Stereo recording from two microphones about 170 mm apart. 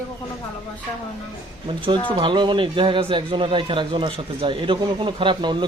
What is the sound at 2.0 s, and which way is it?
A man's voice, 30° right (ahead or behind).